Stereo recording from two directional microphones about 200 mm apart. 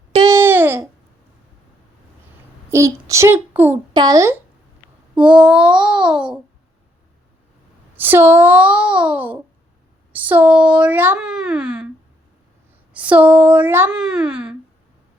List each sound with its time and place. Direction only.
0.3 s babbling: 15° right (ahead or behind)
2.6 s speech: 15° right (ahead or behind)
5.1 s child singing: 5° right (ahead or behind)
7.9 s speech: 10° right (ahead or behind)
12.9 s speech: 5° right (ahead or behind)